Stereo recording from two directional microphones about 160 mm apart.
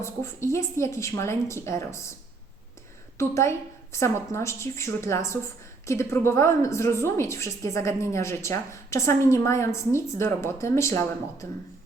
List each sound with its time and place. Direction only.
0.0 s a woman's voice: 15° left (ahead or behind)
3.2 s a woman's voice: 20° left (ahead or behind)